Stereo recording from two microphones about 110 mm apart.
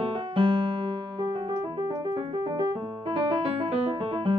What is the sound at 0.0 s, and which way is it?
Keyboard, 55° right (ahead or behind).